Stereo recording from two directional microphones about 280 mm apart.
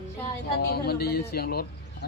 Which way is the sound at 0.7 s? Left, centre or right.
Left.